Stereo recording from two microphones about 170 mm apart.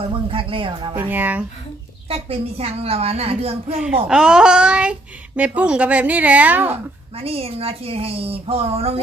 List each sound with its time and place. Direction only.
0.3 s a woman's voice: 30° right (ahead or behind)
0.9 s a woman's voice: 10° right (ahead or behind)
2.0 s a woman's voice: 35° right (ahead or behind)
4.1 s a child's voice: 5° right (ahead or behind)
7.2 s a woman's voice: 35° right (ahead or behind)